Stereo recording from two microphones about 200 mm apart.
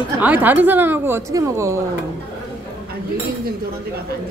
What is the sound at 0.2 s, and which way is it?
A woman's voice, 10° right (ahead or behind).